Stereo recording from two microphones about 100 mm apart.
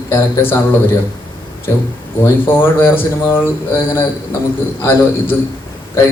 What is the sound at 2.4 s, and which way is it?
A man's voice, 20° left (ahead or behind).